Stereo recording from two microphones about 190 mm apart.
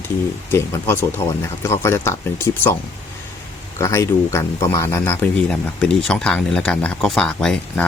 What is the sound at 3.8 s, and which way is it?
Speech, 15° left (ahead or behind).